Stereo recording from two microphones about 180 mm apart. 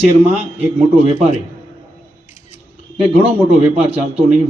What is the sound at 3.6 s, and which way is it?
Speech, 35° right (ahead or behind).